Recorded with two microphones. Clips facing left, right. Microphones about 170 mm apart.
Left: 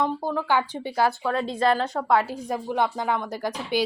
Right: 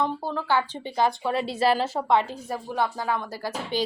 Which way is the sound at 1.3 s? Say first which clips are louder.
Even; 5° right (ahead or behind).